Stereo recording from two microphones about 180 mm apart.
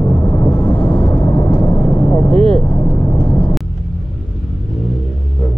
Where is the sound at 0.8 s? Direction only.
25° left (ahead or behind).